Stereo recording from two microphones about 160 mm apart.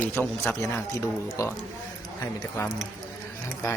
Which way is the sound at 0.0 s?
15° left (ahead or behind).